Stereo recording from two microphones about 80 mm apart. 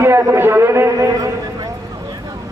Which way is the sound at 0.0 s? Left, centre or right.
Right.